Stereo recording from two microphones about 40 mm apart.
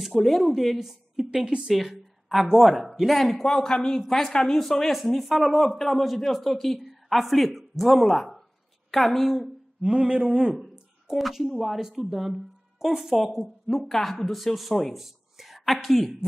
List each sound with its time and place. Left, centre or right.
0.0 s a woman's voice: centre
3.0 s a man's voice: centre
9.9 s a man's voice: right
10.6 s a sound: centre
11.6 s speech: centre
13.7 s speech: centre